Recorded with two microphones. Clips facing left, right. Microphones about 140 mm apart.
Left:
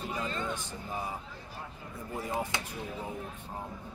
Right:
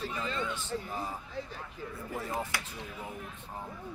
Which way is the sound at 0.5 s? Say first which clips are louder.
Right 2 dB; 15° left (ahead or behind).